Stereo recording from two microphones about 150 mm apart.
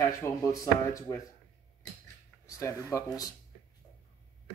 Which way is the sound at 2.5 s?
20° left (ahead or behind).